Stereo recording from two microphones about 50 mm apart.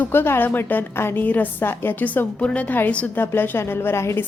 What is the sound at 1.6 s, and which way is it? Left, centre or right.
Speech, left.